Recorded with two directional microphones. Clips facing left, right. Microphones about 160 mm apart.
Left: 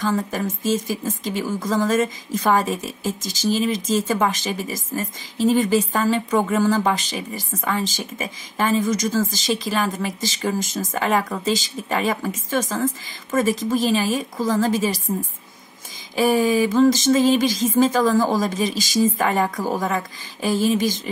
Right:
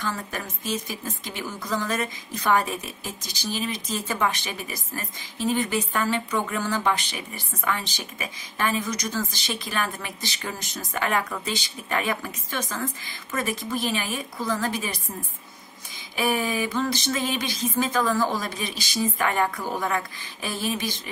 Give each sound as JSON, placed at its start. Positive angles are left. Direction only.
{"t": 0.7, "sound": "speech", "side_deg": 40}
{"t": 16.2, "sound": "speech", "side_deg": 40}